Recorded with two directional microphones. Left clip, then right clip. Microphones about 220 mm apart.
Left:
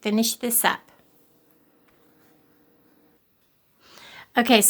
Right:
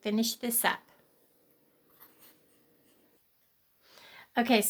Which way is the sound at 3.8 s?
20° left (ahead or behind).